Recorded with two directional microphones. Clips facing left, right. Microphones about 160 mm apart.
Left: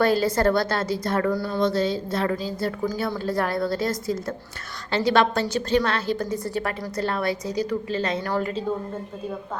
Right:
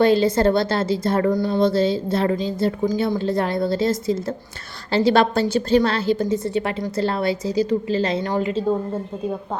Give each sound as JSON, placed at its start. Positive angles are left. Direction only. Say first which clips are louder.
{"t": 0.0, "sound": "a woman's voice", "louder": "right 4 dB", "side_deg": -25}
{"t": 8.3, "sound": "a woman's voice", "louder": "right 3 dB", "side_deg": -20}